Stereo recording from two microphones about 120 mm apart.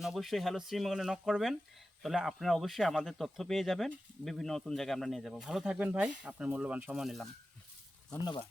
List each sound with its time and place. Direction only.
0.0 s speech: centre (ahead or behind)
8.2 s speech: 35° left (ahead or behind)